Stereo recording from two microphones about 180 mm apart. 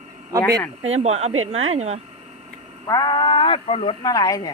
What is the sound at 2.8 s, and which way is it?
Speech, 20° left (ahead or behind).